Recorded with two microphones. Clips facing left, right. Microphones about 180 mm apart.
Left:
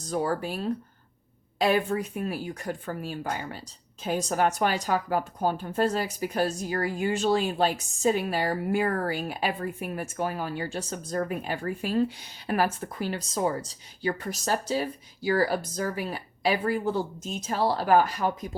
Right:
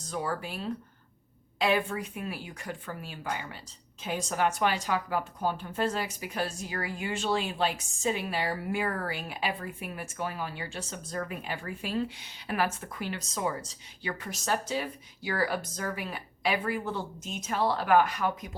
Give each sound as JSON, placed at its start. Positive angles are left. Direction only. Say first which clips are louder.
{"t": 0.1, "sound": "a woman's voice", "louder": "left 6 dB", "side_deg": 40}